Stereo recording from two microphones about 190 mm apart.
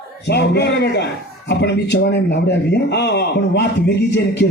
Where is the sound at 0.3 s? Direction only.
60° left (ahead or behind).